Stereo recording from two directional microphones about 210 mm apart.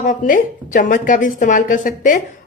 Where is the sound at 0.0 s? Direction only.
40° left (ahead or behind).